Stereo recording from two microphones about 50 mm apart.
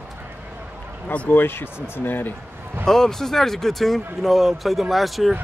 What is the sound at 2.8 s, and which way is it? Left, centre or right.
Speech, centre.